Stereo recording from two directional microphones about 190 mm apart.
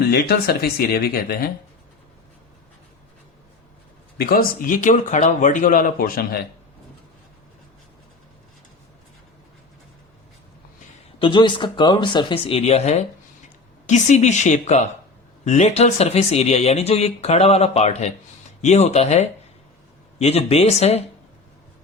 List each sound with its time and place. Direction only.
0.1 s speech: 55° left (ahead or behind)
4.2 s speech: 50° left (ahead or behind)
11.2 s speech: 25° left (ahead or behind)